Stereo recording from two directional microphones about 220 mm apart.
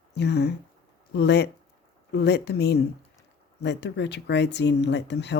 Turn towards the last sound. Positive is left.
turn(degrees=50)  # may be behind; listen again after turning